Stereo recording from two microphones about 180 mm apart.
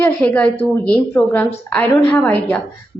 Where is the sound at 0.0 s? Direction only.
10° left (ahead or behind).